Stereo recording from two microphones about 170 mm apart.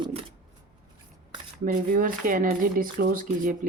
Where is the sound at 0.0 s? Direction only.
35° right (ahead or behind).